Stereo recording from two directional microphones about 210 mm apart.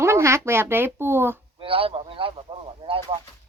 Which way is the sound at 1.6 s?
25° right (ahead or behind).